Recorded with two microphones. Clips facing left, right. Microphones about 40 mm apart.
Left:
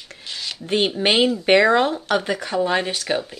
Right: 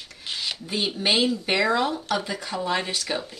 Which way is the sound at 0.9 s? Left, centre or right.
Left.